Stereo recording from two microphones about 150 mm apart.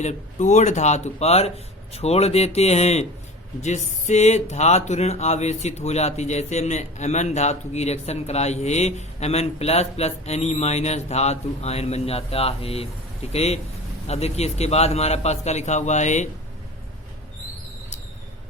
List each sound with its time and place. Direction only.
0.0 s speech: 50° left (ahead or behind)